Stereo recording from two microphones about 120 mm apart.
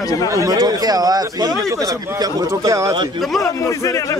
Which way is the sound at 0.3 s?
30° right (ahead or behind).